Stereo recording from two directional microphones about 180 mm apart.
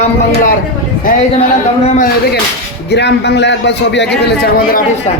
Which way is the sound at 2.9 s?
70° left (ahead or behind).